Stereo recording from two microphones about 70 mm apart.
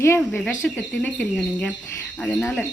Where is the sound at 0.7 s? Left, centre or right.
Left.